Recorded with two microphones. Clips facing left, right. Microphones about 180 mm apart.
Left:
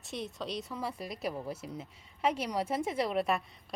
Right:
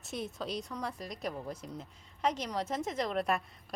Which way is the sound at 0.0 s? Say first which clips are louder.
Even; centre (ahead or behind).